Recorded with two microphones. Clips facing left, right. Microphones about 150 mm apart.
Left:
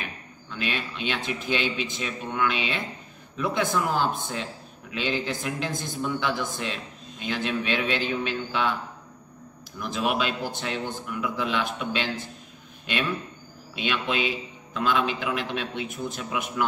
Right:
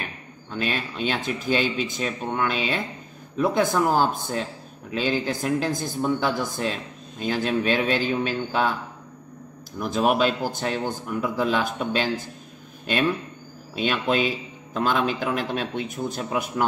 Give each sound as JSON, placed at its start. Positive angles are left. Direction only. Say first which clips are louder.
{"t": 0.5, "sound": "speech", "louder": "right 3 dB", "side_deg": -40}
{"t": 9.8, "sound": "speech", "louder": "right 5 dB", "side_deg": -40}
{"t": 13.7, "sound": "speech", "louder": "right 4 dB", "side_deg": -40}